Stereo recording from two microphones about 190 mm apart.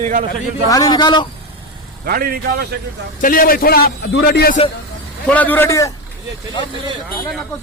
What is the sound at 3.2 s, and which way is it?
A man's voice, 45° left (ahead or behind).